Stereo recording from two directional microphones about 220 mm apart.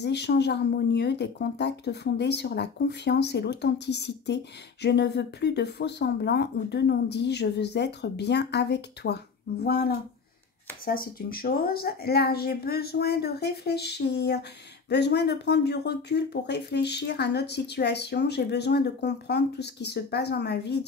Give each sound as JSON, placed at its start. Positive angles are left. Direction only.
{"t": 0.0, "sound": "speech", "side_deg": 50}